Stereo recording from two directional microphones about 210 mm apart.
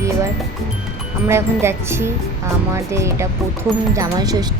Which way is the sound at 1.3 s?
10° right (ahead or behind).